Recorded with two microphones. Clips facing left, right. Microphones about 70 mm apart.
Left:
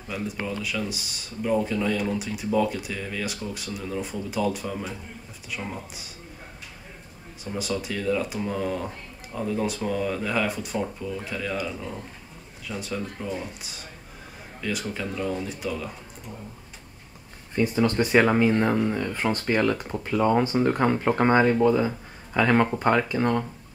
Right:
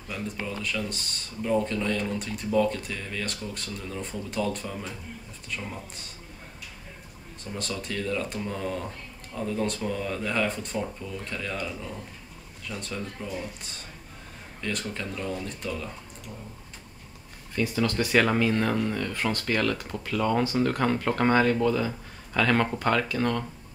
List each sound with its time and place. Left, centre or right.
0.1 s speech: centre
7.5 s speech: centre
17.6 s speech: left